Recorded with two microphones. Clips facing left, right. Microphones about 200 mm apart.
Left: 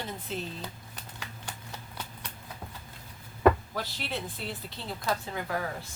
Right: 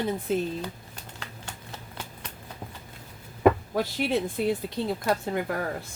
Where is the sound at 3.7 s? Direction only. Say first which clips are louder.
Right 10 dB; 50° right (ahead or behind).